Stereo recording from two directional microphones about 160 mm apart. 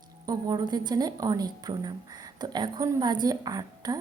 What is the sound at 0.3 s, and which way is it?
A woman's voice, 25° right (ahead or behind).